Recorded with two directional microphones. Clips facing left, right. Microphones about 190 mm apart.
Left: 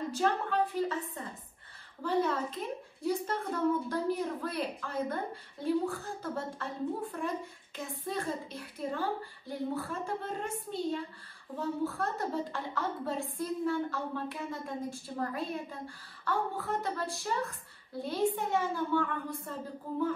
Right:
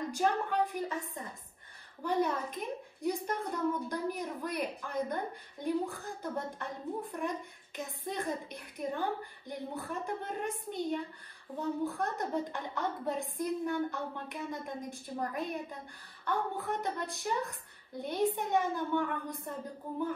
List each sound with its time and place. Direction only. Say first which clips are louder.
0.1 s a woman's voice: left 1 dB; 15° right (ahead or behind)